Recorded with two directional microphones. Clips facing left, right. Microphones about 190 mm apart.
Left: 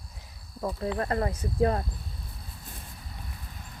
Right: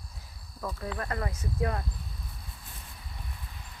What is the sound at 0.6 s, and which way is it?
Speech, 25° left (ahead or behind).